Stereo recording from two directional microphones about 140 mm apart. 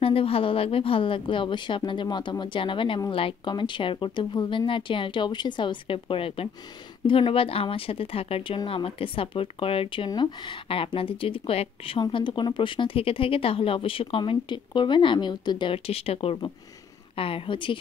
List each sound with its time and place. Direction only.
0.0 s speech: 40° left (ahead or behind)